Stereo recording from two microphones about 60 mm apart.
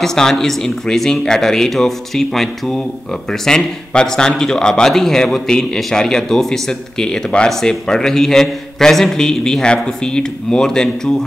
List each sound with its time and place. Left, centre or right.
0.0 s speech: centre